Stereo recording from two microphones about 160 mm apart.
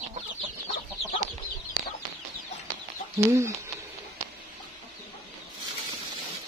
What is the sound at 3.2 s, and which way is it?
Speech, 15° right (ahead or behind).